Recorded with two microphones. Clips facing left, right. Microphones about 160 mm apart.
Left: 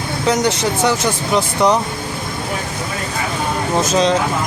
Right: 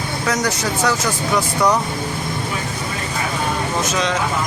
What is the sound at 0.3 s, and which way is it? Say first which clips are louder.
Speech: left 5 dB; 25° left (ahead or behind).